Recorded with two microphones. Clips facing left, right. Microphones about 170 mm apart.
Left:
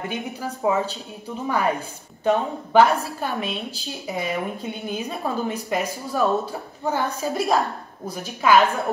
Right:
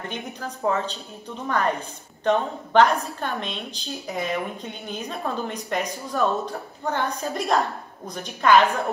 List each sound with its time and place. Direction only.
0.1 s a woman's voice: 10° left (ahead or behind)